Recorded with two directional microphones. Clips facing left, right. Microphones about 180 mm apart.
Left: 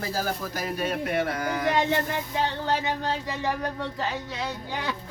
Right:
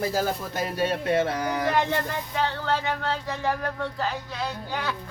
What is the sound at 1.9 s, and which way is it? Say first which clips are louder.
Speech: left 1 dB; 20° left (ahead or behind).